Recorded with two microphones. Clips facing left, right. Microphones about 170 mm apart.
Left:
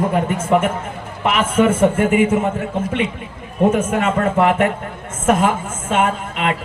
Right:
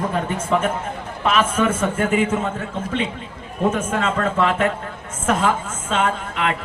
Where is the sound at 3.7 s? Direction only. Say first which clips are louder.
Left 4 dB; 20° left (ahead or behind).